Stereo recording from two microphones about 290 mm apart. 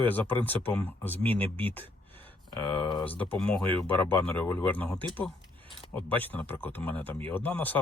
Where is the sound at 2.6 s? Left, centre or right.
Centre.